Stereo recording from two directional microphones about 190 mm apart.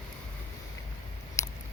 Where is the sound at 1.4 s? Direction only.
15° left (ahead or behind).